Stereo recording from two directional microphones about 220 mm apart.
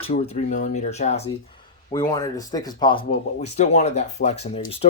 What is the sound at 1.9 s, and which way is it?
Speech, 15° left (ahead or behind).